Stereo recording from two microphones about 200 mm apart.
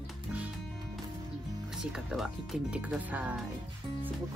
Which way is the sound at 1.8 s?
5° right (ahead or behind).